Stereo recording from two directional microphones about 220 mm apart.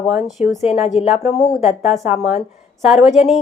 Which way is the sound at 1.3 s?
45° left (ahead or behind).